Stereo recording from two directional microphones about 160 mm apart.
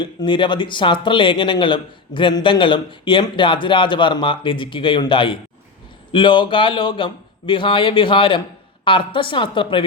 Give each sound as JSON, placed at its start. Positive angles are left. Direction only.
{"t": 0.0, "sound": "speech", "side_deg": 30}